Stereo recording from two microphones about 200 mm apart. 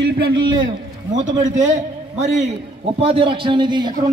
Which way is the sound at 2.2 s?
35° right (ahead or behind).